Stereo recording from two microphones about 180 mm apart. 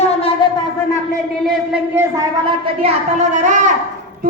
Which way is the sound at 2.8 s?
40° right (ahead or behind).